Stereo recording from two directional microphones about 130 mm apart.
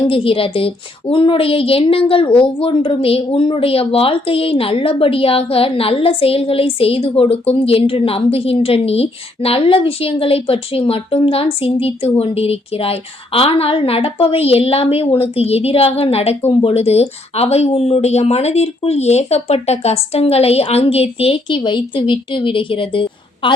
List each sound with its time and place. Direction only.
0.1 s speech: 45° left (ahead or behind)